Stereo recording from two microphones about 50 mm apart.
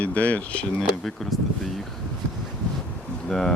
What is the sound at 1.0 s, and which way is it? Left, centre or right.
Speech, centre.